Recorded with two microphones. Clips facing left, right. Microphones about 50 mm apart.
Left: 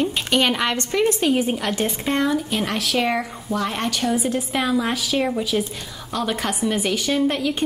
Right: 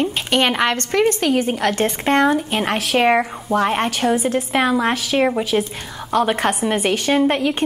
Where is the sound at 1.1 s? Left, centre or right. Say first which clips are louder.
Right 2 dB; right.